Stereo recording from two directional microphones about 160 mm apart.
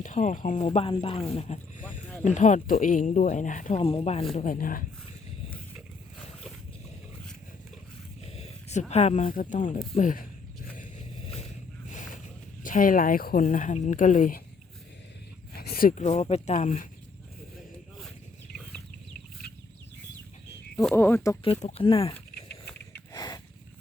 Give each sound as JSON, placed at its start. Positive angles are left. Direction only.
{"t": 0.0, "sound": "speech", "side_deg": 50}
{"t": 1.8, "sound": "a sound", "side_deg": 5}
{"t": 2.2, "sound": "speech", "side_deg": 50}
{"t": 3.8, "sound": "speech", "side_deg": 35}
{"t": 4.4, "sound": "a woman's voice", "side_deg": 55}
{"t": 8.2, "sound": "a sound", "side_deg": 40}
{"t": 9.2, "sound": "a woman's voice", "side_deg": 60}
{"t": 11.9, "sound": "vehicle", "side_deg": 50}
{"t": 12.6, "sound": "a woman's voice", "side_deg": 55}
{"t": 15.5, "sound": "speech", "side_deg": 70}
{"t": 20.9, "sound": "speech", "side_deg": 15}
{"t": 21.6, "sound": "speech", "side_deg": 40}
{"t": 23.1, "sound": "a sound", "side_deg": 25}